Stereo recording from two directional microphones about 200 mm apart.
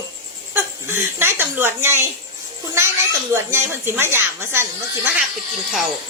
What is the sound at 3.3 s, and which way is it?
A woman's voice, 10° right (ahead or behind).